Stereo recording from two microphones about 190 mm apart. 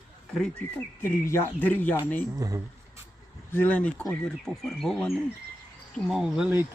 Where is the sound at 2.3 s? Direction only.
15° right (ahead or behind).